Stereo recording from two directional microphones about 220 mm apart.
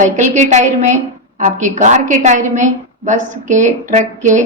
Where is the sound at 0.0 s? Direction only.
35° right (ahead or behind).